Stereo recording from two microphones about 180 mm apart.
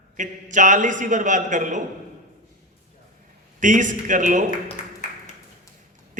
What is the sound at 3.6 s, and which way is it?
Speech, 45° right (ahead or behind).